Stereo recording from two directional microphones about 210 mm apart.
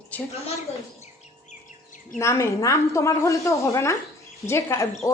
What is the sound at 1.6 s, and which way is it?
Bird, 40° left (ahead or behind).